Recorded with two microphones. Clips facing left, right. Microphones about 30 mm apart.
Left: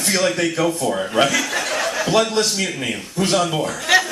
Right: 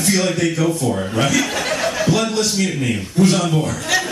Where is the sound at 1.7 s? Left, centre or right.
Centre.